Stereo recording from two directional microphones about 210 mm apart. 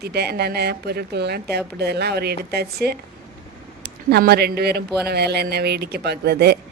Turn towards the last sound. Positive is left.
turn(degrees=-50)  # may be behind; listen again after turning